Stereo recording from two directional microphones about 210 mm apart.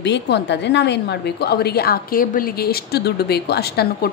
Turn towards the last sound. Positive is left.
turn(degrees=50)  # may be behind; listen again after turning